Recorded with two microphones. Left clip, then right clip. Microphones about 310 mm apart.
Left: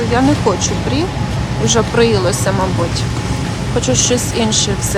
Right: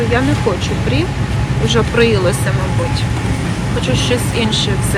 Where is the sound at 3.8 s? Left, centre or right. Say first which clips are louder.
Left 2 dB; centre.